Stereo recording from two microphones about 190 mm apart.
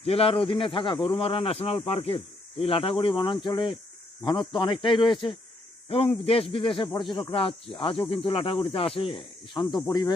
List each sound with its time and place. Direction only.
0.0 s speech: 30° left (ahead or behind)